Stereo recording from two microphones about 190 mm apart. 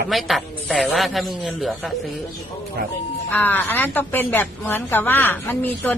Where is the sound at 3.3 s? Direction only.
10° left (ahead or behind).